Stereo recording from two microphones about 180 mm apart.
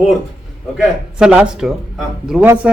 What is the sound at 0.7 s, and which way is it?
Speech, 5° right (ahead or behind).